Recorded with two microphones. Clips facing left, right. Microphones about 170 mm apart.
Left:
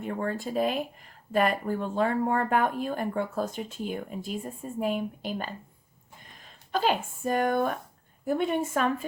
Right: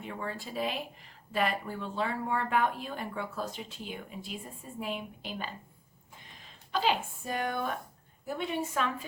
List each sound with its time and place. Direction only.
0.0 s speech: 45° left (ahead or behind)